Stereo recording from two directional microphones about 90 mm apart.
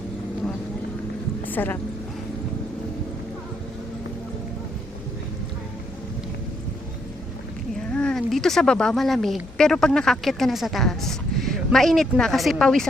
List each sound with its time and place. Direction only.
1.5 s speech: 20° left (ahead or behind)
7.9 s speech: 5° left (ahead or behind)